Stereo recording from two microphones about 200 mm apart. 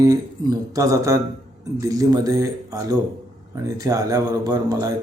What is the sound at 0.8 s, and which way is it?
A man's voice, 15° right (ahead or behind).